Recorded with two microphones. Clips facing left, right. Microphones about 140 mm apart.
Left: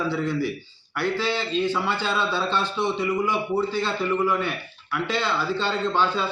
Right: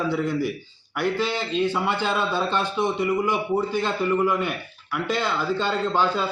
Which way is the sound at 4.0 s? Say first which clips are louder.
Right 1 dB; 10° right (ahead or behind).